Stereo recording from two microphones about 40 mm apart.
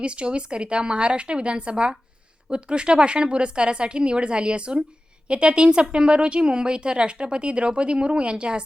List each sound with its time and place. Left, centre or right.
0.0 s a woman's voice: right